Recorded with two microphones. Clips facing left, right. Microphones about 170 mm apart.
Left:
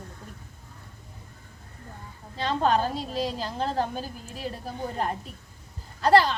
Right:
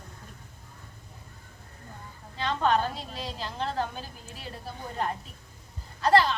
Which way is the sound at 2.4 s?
35° left (ahead or behind).